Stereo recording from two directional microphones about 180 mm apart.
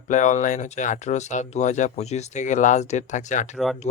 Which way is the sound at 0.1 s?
40° left (ahead or behind).